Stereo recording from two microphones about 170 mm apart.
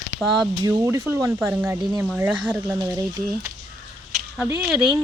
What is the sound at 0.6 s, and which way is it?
Speech, 20° right (ahead or behind).